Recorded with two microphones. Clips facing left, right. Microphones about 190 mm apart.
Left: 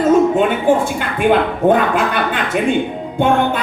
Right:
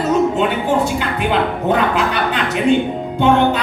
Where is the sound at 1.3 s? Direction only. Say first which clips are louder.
Left 4 dB; 50° left (ahead or behind).